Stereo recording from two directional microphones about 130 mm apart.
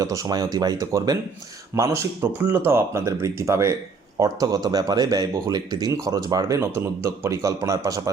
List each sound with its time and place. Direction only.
0.0 s speech: 25° right (ahead or behind)